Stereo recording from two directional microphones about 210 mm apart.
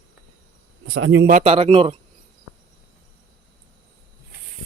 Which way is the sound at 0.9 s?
70° right (ahead or behind).